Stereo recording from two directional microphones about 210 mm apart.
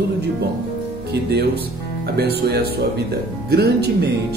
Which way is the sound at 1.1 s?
50° right (ahead or behind).